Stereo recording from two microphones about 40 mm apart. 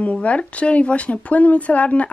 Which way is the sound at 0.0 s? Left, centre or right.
Left.